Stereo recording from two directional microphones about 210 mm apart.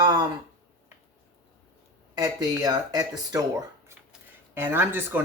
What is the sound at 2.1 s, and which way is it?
Speech, 20° right (ahead or behind).